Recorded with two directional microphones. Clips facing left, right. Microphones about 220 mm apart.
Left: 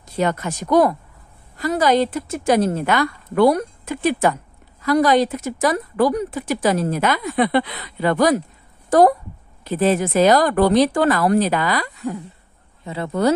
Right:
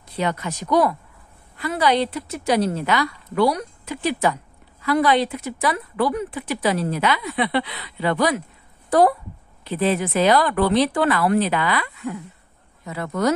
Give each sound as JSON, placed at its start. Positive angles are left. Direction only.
{"t": 0.1, "sound": "speech", "side_deg": 45}
{"t": 12.8, "sound": "speech", "side_deg": 30}